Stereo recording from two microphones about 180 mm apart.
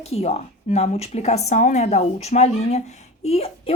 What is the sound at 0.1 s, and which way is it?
Speech, 35° left (ahead or behind).